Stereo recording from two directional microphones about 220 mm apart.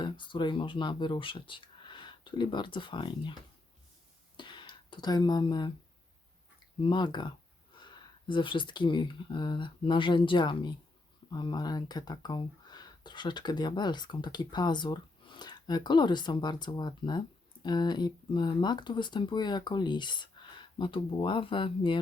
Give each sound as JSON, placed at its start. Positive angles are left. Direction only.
{"t": 0.0, "sound": "speech", "side_deg": 20}
{"t": 4.4, "sound": "a sound", "side_deg": 20}
{"t": 6.8, "sound": "speech", "side_deg": 20}